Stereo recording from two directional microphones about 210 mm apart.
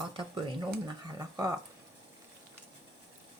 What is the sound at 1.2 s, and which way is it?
Speech, 15° right (ahead or behind).